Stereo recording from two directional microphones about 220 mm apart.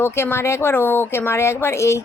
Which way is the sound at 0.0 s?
10° left (ahead or behind).